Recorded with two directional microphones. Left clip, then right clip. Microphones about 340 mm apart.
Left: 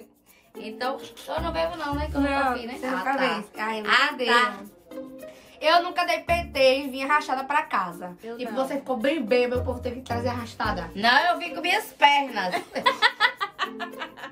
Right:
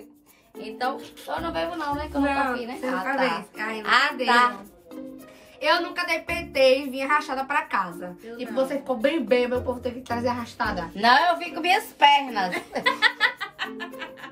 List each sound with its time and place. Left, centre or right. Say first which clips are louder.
1.5 s a woman's voice: even; centre
2.5 s a woman's voice: right 1 dB; centre
3.1 s a woman's voice: even; centre
3.8 s a woman's voice: right 1 dB; centre
5.6 s a woman's voice: left 2 dB; centre
11.0 s a woman's voice: right 2 dB; centre
12.8 s music: even; centre